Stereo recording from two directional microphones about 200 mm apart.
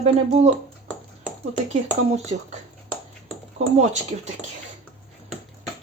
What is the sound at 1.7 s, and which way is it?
Speech, 35° right (ahead or behind).